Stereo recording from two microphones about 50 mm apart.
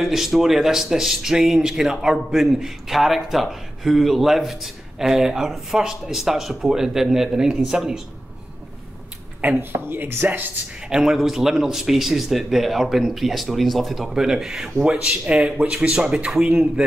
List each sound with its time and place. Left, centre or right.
0.0 s a man's voice: centre
9.6 s speech: right
10.2 s speech: right
10.9 s a man's voice: centre
15.0 s speech: right